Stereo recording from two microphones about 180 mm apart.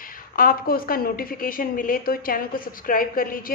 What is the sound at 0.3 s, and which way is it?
A woman's voice, 55° left (ahead or behind).